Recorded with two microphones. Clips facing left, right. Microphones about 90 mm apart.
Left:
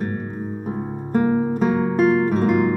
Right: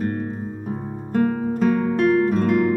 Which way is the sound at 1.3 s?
15° left (ahead or behind).